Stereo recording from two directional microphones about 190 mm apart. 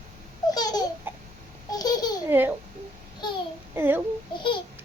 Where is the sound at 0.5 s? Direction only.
20° left (ahead or behind).